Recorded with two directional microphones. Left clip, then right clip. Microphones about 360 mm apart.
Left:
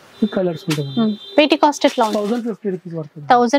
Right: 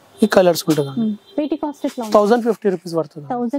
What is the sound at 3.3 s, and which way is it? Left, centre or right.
Speech, centre.